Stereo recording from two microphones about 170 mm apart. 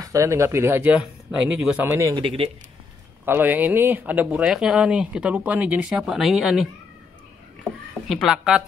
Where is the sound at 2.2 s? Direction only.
35° right (ahead or behind).